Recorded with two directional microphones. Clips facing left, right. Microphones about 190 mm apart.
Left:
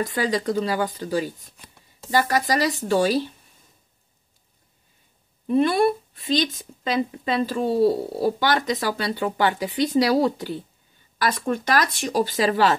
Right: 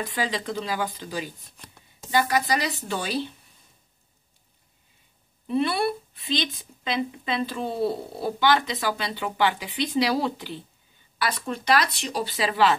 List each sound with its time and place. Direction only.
0.0 s a woman's voice: 45° left (ahead or behind)
5.5 s a woman's voice: 45° left (ahead or behind)